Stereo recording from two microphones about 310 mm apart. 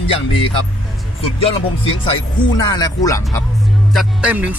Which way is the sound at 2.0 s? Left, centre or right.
Centre.